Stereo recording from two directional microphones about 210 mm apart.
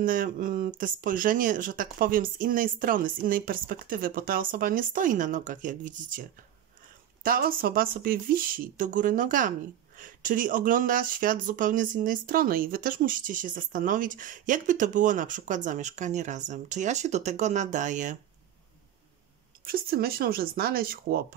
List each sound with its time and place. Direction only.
0.0 s speech: 40° right (ahead or behind)
7.2 s speech: 45° right (ahead or behind)
19.6 s speech: 45° right (ahead or behind)